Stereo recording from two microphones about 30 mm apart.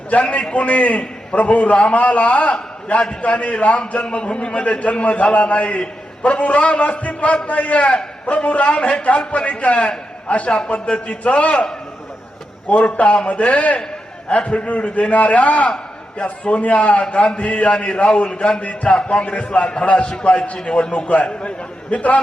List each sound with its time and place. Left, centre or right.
0.1 s a man's voice: left
4.0 s a man's voice: left
12.6 s a man's voice: left
18.6 s a man's voice: left